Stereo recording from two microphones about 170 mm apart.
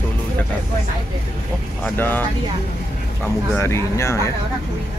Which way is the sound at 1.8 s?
10° left (ahead or behind).